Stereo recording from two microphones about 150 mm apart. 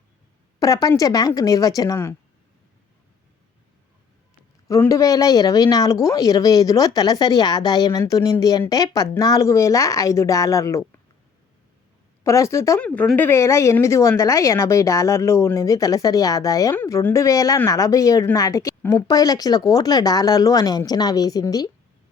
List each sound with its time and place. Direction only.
0.6 s a woman's voice: 25° left (ahead or behind)
4.7 s a woman's voice: 20° left (ahead or behind)
12.2 s a woman's voice: 20° left (ahead or behind)
12.8 s a woman's voice: 10° left (ahead or behind); by 21.7 s 25° left (ahead or behind)